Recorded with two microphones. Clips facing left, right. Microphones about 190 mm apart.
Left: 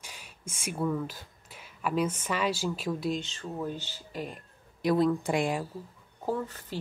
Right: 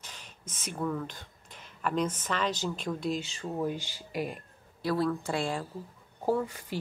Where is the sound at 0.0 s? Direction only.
10° left (ahead or behind).